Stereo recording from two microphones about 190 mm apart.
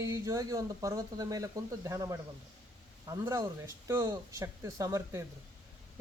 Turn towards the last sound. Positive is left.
turn(degrees=-15)  # may be behind; listen again after turning